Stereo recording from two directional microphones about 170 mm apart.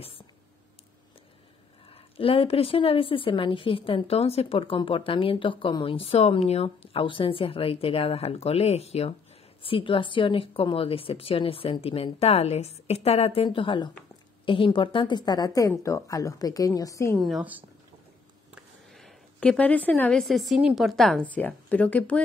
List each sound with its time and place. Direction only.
2.1 s a woman's voice: 35° left (ahead or behind); by 17.2 s 15° left (ahead or behind)
17.2 s a woman's voice: 5° right (ahead or behind)